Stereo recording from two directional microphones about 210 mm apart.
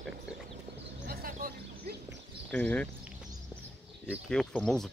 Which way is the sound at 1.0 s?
45° right (ahead or behind).